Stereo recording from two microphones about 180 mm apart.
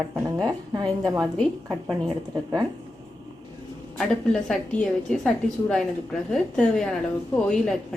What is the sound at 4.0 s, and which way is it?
A woman's voice, 5° left (ahead or behind).